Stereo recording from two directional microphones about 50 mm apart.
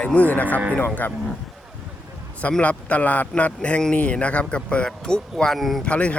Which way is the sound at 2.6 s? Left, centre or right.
Left.